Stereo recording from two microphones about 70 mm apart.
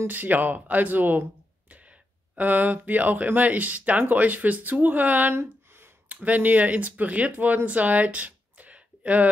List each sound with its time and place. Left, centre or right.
0.0 s speech: right
6.0 s speech: right